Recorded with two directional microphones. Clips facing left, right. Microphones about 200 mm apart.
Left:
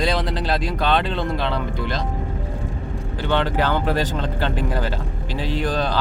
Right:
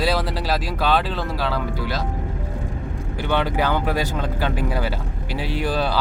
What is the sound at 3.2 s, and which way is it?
Speech, 10° right (ahead or behind).